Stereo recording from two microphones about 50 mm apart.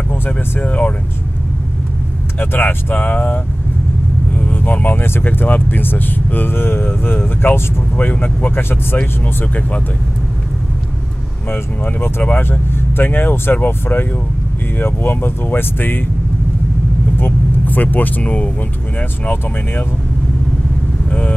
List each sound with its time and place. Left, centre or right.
0.1 s speech: left
2.3 s speech: left
4.3 s vehicle: left
5.0 s speech: left
11.5 s speech: left
17.2 s speech: left